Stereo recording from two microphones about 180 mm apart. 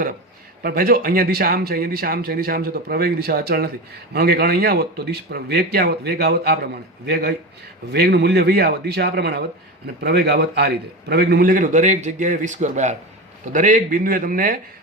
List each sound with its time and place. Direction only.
0.6 s a man's voice: 55° right (ahead or behind)